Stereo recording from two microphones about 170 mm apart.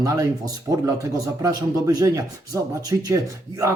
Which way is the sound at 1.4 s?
20° right (ahead or behind).